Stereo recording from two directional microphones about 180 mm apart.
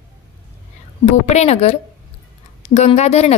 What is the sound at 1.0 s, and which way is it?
Speech, 40° left (ahead or behind).